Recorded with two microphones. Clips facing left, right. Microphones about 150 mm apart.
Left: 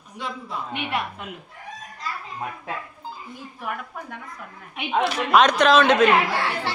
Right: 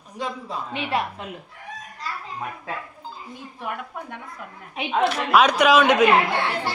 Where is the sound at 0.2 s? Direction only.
35° right (ahead or behind).